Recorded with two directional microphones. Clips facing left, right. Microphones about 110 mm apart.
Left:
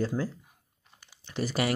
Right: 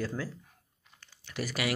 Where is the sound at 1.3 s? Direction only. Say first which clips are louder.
Left 4 dB; 30° left (ahead or behind).